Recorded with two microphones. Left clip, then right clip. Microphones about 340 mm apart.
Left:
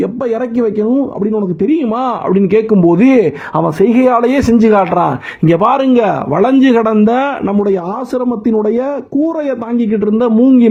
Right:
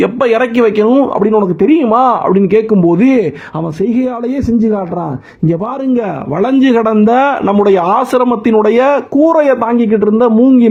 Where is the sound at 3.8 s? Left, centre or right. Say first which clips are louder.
Left 5 dB; left.